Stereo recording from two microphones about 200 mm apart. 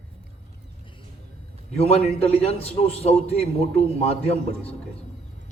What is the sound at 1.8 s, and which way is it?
A man's voice, 30° left (ahead or behind).